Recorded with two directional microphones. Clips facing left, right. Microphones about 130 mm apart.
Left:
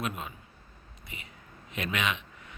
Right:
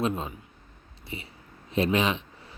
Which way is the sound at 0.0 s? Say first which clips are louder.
Right 7 dB; 30° right (ahead or behind).